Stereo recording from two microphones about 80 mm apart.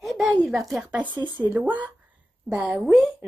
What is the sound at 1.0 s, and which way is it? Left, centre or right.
Speech, right.